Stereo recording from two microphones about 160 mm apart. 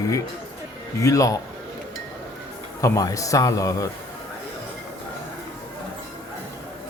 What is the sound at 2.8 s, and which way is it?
A man's voice, 20° left (ahead or behind).